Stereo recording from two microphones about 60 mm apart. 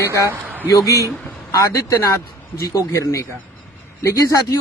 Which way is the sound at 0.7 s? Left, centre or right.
Left.